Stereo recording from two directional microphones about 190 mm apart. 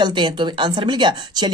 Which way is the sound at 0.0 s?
25° right (ahead or behind).